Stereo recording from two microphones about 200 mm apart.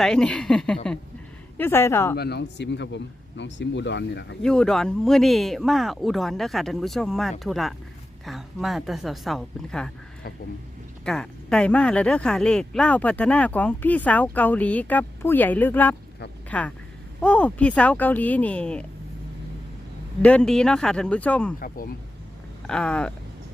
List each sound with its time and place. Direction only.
0.0 s speech: 5° left (ahead or behind)
2.1 s speech: 55° left (ahead or behind)
4.4 s speech: 5° left (ahead or behind)
11.0 s speech: 5° left (ahead or behind)
20.2 s speech: 5° left (ahead or behind)
21.6 s speech: 45° left (ahead or behind)
22.6 s speech: 5° left (ahead or behind)